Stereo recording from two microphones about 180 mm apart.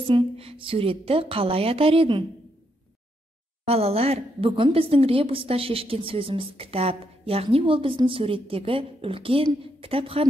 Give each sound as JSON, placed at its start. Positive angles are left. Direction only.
{"t": 0.0, "sound": "a woman's voice", "side_deg": -30}
{"t": 3.6, "sound": "a woman's voice", "side_deg": -35}